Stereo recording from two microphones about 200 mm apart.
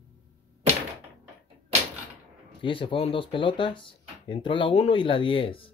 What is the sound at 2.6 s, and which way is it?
Speech, 25° left (ahead or behind).